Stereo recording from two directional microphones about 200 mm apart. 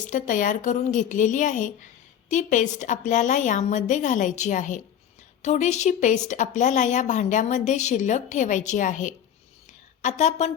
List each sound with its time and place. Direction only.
0.1 s a woman's voice: 40° left (ahead or behind)